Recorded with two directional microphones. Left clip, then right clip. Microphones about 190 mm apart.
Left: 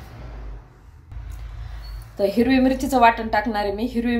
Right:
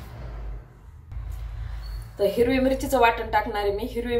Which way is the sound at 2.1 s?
40° left (ahead or behind).